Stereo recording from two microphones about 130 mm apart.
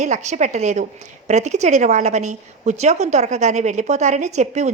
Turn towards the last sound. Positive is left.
turn(degrees=-60)  # may be behind; listen again after turning